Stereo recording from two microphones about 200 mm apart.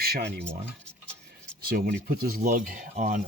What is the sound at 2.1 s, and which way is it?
Speech, 45° right (ahead or behind).